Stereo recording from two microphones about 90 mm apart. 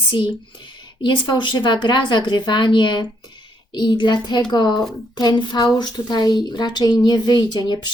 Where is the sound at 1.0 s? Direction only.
60° left (ahead or behind).